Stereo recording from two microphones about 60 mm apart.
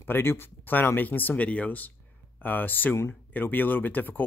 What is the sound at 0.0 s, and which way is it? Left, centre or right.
Speech, left.